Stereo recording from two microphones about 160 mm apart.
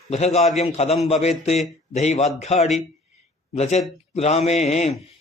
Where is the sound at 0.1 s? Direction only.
45° left (ahead or behind).